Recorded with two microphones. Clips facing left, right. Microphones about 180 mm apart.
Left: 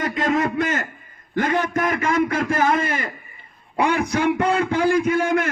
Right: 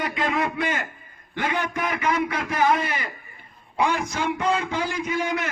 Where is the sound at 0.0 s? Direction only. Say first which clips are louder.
Left 4 dB; 45° left (ahead or behind).